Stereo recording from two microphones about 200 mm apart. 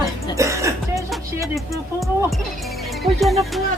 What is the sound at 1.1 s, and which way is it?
Speech, centre (ahead or behind).